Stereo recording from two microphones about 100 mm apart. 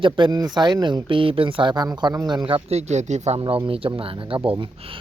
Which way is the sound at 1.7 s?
40° right (ahead or behind).